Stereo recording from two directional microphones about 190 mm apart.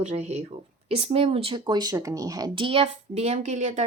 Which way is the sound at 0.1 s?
35° right (ahead or behind).